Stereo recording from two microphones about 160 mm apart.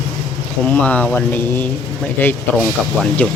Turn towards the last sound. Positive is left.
turn(degrees=10)  # may be behind; listen again after turning